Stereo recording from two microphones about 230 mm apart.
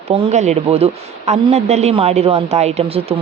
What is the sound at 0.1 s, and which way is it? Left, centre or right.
Speech, right.